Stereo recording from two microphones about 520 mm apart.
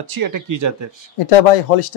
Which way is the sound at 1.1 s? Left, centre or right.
Left.